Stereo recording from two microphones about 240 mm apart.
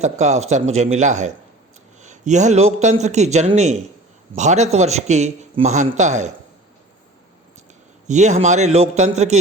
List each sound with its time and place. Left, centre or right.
0.0 s a man's voice: right
8.0 s a man's voice: right